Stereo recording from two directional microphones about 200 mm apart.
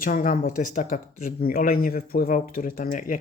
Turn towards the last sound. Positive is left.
turn(degrees=40)  # may be behind; listen again after turning